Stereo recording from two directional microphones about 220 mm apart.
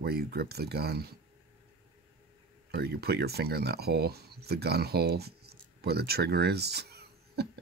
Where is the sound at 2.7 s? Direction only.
45° right (ahead or behind).